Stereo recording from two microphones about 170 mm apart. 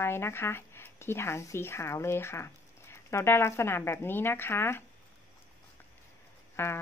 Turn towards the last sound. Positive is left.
turn(degrees=15)  # may be behind; listen again after turning